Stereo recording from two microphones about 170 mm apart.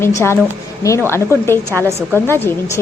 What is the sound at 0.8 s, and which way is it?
Speech, 20° left (ahead or behind).